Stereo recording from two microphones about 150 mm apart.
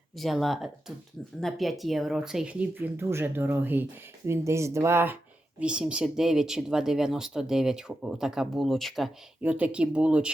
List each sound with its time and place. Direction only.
0.2 s speech: centre (ahead or behind); by 5.1 s 15° right (ahead or behind)
5.5 s speech: 5° right (ahead or behind)
9.4 s speech: 10° right (ahead or behind)